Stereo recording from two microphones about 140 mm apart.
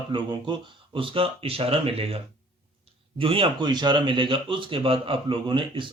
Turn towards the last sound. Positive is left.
turn(degrees=-35)  # may be behind; listen again after turning